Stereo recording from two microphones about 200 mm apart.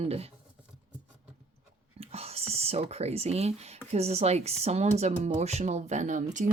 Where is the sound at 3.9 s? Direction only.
30° right (ahead or behind).